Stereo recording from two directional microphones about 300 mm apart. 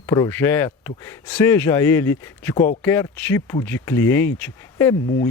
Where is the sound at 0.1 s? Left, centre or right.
Centre.